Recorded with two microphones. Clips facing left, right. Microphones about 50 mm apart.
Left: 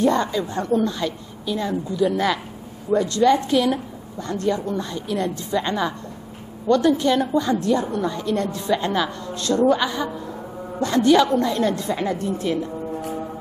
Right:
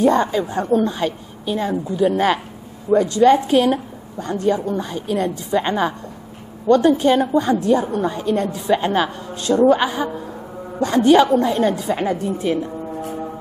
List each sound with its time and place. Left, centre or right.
0.0 s a woman's voice: right
2.9 s a woman's voice: centre
3.4 s a woman's voice: right
8.5 s a woman's voice: centre
8.7 s a woman's voice: right